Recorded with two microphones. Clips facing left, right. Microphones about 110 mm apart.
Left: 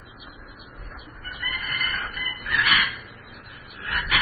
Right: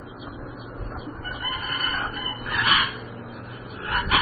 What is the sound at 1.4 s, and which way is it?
Chicken, 35° right (ahead or behind).